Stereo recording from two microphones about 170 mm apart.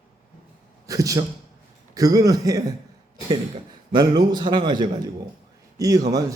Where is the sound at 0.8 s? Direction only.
20° right (ahead or behind).